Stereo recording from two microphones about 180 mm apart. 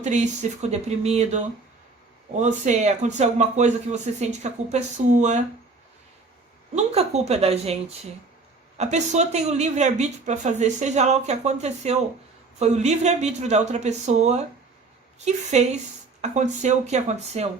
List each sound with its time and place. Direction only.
0.0 s a woman's voice: 40° right (ahead or behind)
6.7 s a woman's voice: 35° right (ahead or behind)
8.8 s a woman's voice: 40° right (ahead or behind)